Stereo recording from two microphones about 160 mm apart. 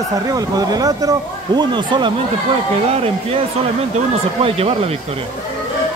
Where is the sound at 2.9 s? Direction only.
40° right (ahead or behind).